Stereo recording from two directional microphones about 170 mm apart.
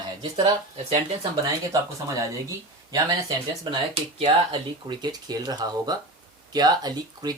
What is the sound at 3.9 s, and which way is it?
Speech, 35° right (ahead or behind).